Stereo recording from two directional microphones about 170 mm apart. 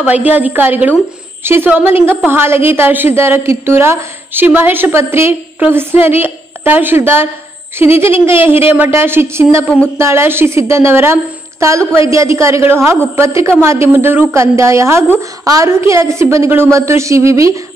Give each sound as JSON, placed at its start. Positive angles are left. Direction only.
{"t": 0.0, "sound": "a woman's voice", "side_deg": -10}